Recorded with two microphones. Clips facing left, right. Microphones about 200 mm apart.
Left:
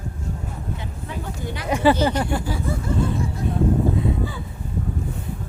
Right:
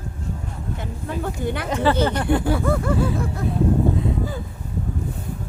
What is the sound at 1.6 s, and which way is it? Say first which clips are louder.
Speech: left 3 dB; 10° left (ahead or behind).